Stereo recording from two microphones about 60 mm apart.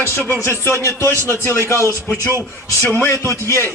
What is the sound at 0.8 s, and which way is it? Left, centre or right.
Speech, left.